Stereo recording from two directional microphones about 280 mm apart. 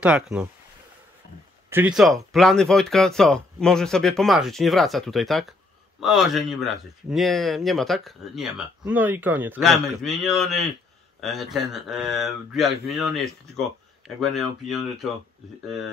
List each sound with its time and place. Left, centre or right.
0.0 s speech: centre
1.7 s speech: centre